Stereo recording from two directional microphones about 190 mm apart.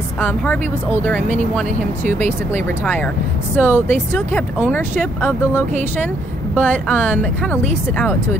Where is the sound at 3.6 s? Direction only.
10° left (ahead or behind).